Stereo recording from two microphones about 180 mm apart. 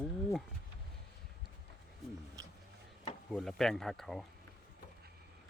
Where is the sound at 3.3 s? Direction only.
Centre (ahead or behind).